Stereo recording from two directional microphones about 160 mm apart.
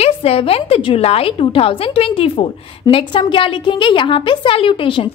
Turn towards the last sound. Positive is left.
turn(degrees=35)  # may be behind; listen again after turning